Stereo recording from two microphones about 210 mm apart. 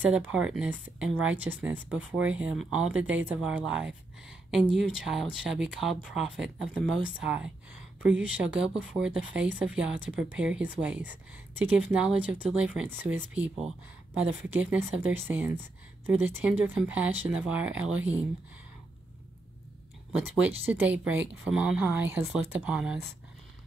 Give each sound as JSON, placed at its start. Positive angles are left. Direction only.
{"t": 0.0, "sound": "speech", "side_deg": -5}
{"t": 20.1, "sound": "speech", "side_deg": -5}